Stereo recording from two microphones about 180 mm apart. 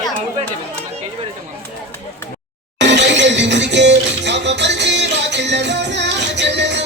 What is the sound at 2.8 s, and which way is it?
Music, 75° right (ahead or behind).